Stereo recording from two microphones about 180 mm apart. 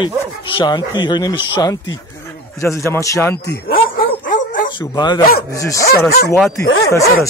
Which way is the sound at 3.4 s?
60° left (ahead or behind).